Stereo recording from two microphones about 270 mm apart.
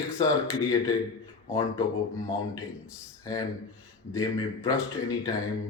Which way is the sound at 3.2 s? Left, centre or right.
Centre.